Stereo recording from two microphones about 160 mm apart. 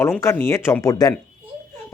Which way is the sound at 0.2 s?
15° left (ahead or behind).